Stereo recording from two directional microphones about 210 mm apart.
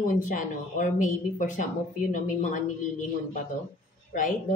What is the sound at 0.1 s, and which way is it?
Speech, 40° left (ahead or behind).